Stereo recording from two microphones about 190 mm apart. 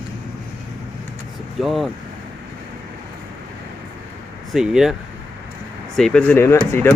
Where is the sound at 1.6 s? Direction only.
Centre (ahead or behind).